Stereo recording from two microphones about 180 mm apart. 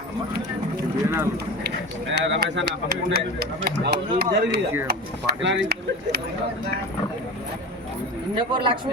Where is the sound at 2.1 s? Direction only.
75° right (ahead or behind).